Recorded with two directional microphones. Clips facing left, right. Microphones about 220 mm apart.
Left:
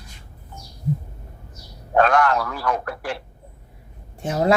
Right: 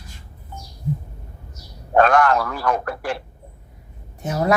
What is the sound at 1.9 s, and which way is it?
A man's voice, 50° right (ahead or behind).